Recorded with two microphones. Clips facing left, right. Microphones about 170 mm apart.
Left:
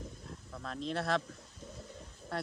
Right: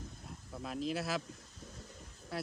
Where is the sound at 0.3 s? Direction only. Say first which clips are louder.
Right 2 dB; 5° right (ahead or behind).